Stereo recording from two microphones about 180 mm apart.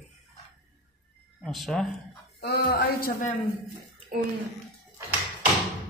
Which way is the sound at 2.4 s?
60° left (ahead or behind).